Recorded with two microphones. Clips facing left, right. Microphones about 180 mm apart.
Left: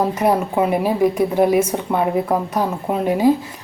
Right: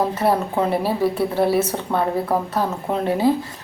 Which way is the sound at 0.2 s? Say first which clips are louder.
Left 2 dB; 15° left (ahead or behind).